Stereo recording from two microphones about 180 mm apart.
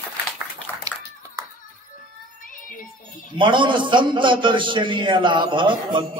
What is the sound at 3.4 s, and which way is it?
A man's voice, 25° right (ahead or behind).